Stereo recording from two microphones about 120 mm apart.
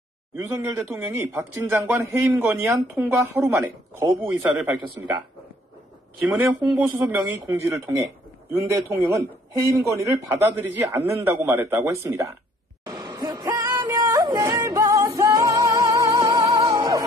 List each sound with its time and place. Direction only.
0.4 s speech: 20° right (ahead or behind)
6.6 s speech: 15° right (ahead or behind)
12.8 s music: 40° right (ahead or behind)